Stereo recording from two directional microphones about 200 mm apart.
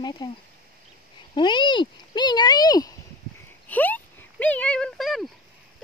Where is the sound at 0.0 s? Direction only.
20° left (ahead or behind).